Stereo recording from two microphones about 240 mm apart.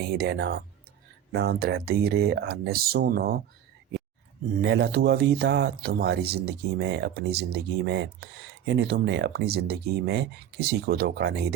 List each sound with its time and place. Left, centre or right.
0.2 s speech: right
4.6 s speech: right